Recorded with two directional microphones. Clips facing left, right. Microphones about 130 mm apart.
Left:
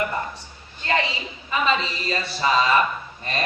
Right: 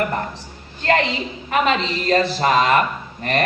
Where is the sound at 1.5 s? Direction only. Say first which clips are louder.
Right 4 dB; 60° right (ahead or behind).